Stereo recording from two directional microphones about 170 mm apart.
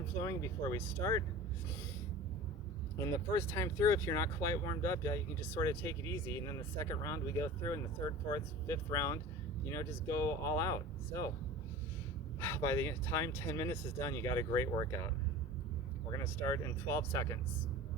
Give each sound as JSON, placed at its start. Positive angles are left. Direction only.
{"t": 0.2, "sound": "speech", "side_deg": 20}
{"t": 3.0, "sound": "speech", "side_deg": 15}
{"t": 12.4, "sound": "speech", "side_deg": 15}
{"t": 16.1, "sound": "speech", "side_deg": 15}